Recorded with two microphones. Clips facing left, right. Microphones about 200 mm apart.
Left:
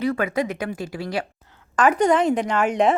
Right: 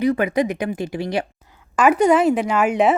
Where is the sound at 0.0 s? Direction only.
15° right (ahead or behind).